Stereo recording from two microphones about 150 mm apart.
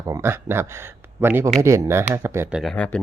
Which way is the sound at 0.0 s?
20° right (ahead or behind).